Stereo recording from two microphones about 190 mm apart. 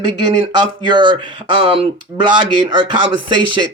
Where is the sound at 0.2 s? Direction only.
20° right (ahead or behind).